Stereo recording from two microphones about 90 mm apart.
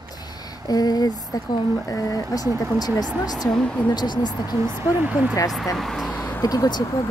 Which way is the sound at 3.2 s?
45° left (ahead or behind).